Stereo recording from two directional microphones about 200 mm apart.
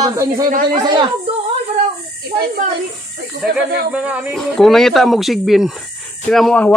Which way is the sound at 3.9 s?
5° right (ahead or behind).